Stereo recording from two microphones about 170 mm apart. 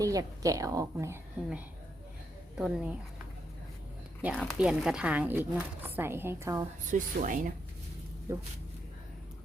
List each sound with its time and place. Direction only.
0.0 s a woman's voice: 20° right (ahead or behind)
2.6 s speech: 5° right (ahead or behind)
4.2 s speech: 5° right (ahead or behind)
6.9 s speech: 50° right (ahead or behind)
8.3 s speech: 15° right (ahead or behind)